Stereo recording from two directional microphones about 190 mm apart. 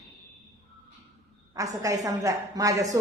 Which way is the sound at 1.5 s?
15° right (ahead or behind).